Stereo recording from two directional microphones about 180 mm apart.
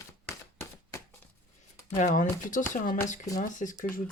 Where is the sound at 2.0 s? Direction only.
45° left (ahead or behind).